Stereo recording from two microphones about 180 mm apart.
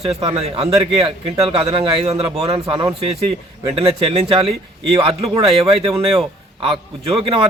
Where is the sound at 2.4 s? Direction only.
20° right (ahead or behind).